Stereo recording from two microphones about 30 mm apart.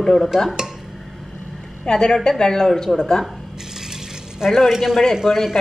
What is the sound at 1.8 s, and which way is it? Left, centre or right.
A woman's voice, left.